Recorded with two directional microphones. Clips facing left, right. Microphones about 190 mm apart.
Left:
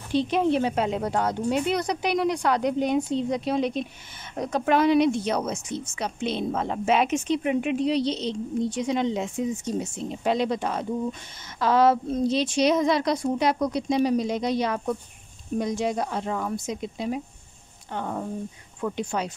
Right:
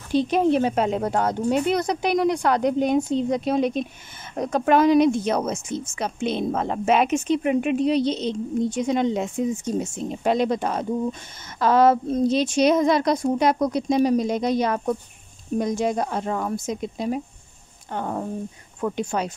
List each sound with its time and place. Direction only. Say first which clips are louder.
0.1 s speech: right 3 dB; 45° right (ahead or behind)